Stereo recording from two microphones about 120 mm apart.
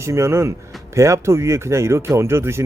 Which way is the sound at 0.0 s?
25° right (ahead or behind).